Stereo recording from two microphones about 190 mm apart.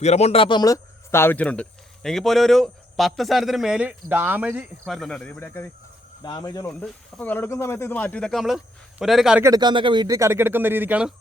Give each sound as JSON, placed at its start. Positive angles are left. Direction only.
{"t": 0.0, "sound": "speech", "side_deg": 35}
{"t": 6.2, "sound": "speech", "side_deg": 20}
{"t": 6.7, "sound": "speech", "side_deg": 5}
{"t": 9.4, "sound": "speech", "side_deg": -20}